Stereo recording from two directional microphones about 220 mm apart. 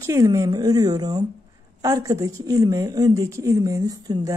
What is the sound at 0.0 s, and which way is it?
A woman's voice, 15° right (ahead or behind).